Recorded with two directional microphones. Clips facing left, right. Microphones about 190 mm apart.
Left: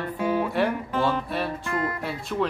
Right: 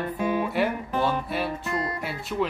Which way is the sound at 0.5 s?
Centre (ahead or behind).